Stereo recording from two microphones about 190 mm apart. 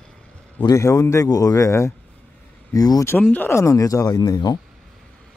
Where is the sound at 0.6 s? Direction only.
15° left (ahead or behind).